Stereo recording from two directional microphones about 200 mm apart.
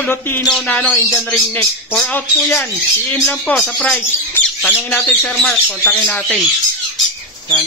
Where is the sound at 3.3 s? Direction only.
5° left (ahead or behind).